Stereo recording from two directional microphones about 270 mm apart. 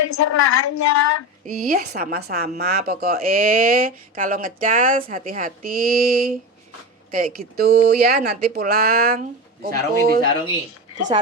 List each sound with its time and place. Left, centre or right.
0.0 s a woman's voice: left
1.5 s a woman's voice: right